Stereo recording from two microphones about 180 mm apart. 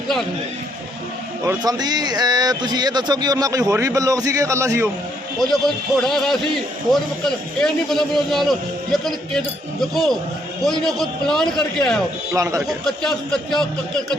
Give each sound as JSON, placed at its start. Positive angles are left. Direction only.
{"t": 1.5, "sound": "speech", "side_deg": -20}
{"t": 5.4, "sound": "a man's voice", "side_deg": 0}
{"t": 10.6, "sound": "a man's voice", "side_deg": 0}
{"t": 12.3, "sound": "a man's voice", "side_deg": -15}
{"t": 12.6, "sound": "a man's voice", "side_deg": 0}